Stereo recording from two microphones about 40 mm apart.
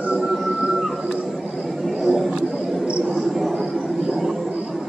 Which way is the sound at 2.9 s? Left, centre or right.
Right.